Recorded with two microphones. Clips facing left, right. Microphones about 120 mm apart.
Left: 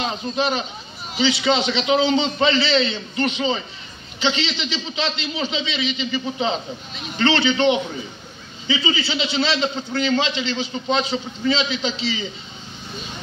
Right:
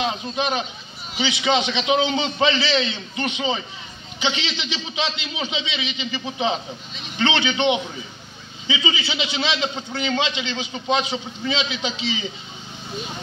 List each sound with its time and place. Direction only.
1.4 s a man's voice: 15° right (ahead or behind)